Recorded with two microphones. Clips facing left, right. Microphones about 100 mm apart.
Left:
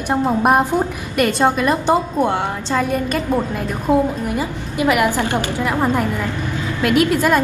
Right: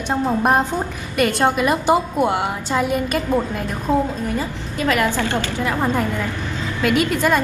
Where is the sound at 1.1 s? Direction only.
Centre (ahead or behind).